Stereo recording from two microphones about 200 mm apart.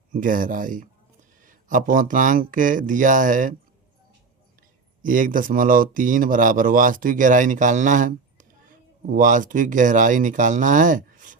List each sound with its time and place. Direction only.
0.1 s speech: 40° right (ahead or behind)
5.0 s speech: 40° right (ahead or behind)